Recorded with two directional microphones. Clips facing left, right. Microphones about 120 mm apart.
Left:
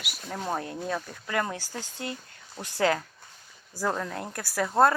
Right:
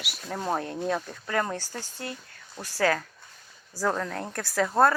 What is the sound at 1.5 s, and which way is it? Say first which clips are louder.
Speech: right 2 dB; 15° left (ahead or behind).